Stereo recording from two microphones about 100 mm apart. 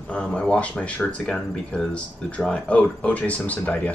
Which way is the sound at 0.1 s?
10° left (ahead or behind).